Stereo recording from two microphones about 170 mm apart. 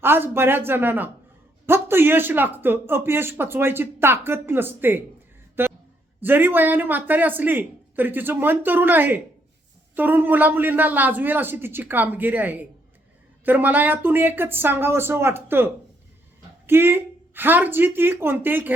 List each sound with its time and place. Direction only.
0.0 s speech: 15° right (ahead or behind)
5.6 s a sound: 15° right (ahead or behind)
6.2 s speech: 10° right (ahead or behind)